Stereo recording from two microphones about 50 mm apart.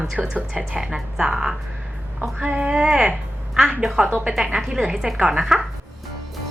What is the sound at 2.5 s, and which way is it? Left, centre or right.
Speech, centre.